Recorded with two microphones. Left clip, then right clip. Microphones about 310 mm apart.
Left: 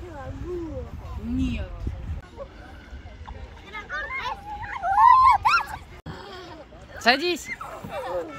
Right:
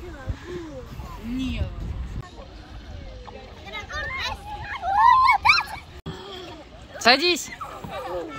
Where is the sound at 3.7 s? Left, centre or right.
Right.